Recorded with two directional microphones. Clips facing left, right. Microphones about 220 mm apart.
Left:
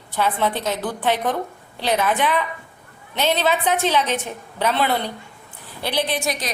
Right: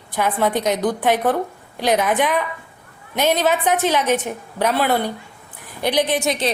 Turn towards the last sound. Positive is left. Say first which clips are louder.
# right 5 dB
turn(degrees=-25)  # may be behind; listen again after turning